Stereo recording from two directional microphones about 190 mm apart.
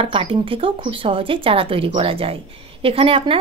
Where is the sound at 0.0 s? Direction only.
30° right (ahead or behind).